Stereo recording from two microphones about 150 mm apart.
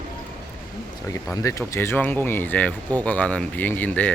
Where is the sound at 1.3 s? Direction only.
20° left (ahead or behind).